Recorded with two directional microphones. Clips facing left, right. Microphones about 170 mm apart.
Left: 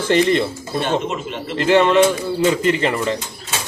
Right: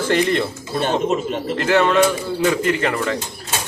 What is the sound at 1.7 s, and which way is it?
A man's voice, 15° left (ahead or behind).